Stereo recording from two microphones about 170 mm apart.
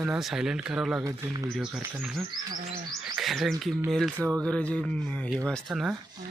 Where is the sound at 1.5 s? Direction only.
5° right (ahead or behind).